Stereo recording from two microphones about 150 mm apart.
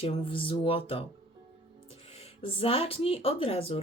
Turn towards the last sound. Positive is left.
turn(degrees=40)  # may be behind; listen again after turning